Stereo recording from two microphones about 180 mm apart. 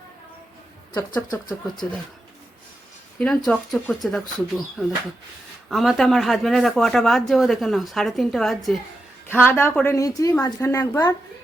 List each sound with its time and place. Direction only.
1.5 s speech: 25° left (ahead or behind)
3.2 s speech: 5° left (ahead or behind)
9.2 s a woman's voice: 10° left (ahead or behind)